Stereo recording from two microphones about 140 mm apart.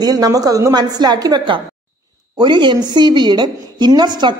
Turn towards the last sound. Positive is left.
turn(degrees=-30)  # may be behind; listen again after turning